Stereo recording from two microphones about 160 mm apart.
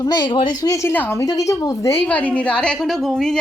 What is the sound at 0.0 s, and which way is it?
A woman's voice, 25° left (ahead or behind).